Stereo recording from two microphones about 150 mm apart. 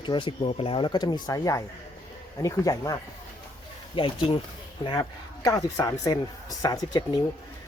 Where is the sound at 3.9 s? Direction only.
35° left (ahead or behind).